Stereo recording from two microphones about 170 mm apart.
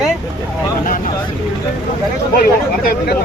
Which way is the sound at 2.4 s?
60° left (ahead or behind).